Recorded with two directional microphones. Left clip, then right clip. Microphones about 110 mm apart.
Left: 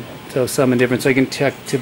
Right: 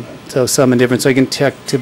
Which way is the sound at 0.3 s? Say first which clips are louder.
Right 4 dB; 45° right (ahead or behind).